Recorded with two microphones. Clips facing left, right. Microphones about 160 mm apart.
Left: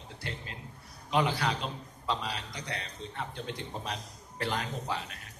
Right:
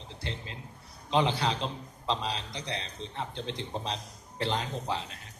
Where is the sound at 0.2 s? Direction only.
25° right (ahead or behind).